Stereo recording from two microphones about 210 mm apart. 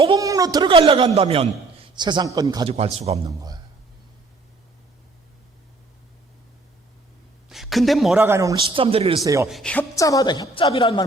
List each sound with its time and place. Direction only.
0.0 s speech: 20° right (ahead or behind)
2.7 s speech: 30° right (ahead or behind)
3.2 s a man's voice: 20° right (ahead or behind)
7.5 s a man's voice: centre (ahead or behind); by 9.1 s 25° right (ahead or behind)
9.2 s a man's voice: 15° right (ahead or behind)
9.5 s a woman's voice: centre (ahead or behind)
9.9 s a woman's voice: 15° left (ahead or behind)